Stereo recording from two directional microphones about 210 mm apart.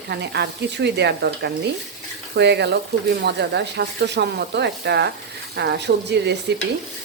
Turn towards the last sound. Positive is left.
turn(degrees=-55)  # may be behind; listen again after turning